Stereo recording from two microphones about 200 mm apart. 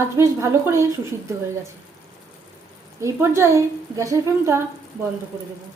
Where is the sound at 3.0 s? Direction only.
15° right (ahead or behind).